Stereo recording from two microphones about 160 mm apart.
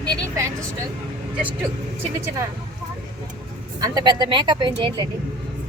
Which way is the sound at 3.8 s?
25° right (ahead or behind).